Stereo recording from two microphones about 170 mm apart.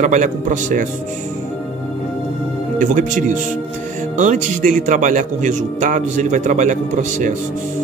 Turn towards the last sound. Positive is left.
turn(degrees=-45)  # may be behind; listen again after turning